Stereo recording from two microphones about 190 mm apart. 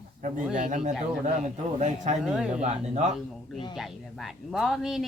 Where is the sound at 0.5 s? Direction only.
40° right (ahead or behind).